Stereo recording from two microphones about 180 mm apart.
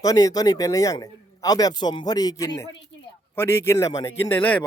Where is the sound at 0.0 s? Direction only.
20° left (ahead or behind).